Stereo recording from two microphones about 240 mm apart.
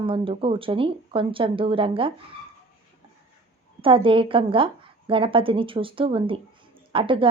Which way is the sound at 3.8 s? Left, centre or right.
Right.